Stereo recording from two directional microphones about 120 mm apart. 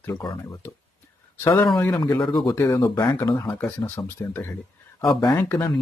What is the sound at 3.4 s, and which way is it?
Speech, 20° left (ahead or behind).